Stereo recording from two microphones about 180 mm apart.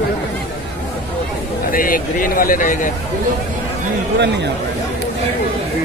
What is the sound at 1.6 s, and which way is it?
Speech, 50° left (ahead or behind).